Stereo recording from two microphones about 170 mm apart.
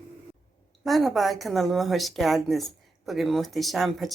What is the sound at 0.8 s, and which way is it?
A woman's voice, centre (ahead or behind).